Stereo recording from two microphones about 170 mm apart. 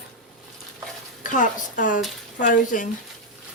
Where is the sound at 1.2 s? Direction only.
50° left (ahead or behind).